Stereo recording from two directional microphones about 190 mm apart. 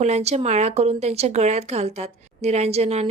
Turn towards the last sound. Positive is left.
turn(degrees=-35)  # may be behind; listen again after turning